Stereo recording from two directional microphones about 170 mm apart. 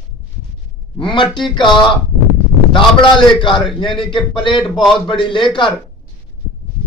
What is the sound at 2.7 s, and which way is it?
A man's voice, 30° left (ahead or behind).